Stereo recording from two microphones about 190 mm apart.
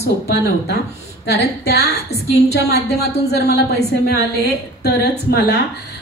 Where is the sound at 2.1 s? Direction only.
35° left (ahead or behind).